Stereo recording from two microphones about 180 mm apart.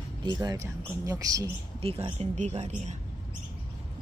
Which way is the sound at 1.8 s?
35° right (ahead or behind).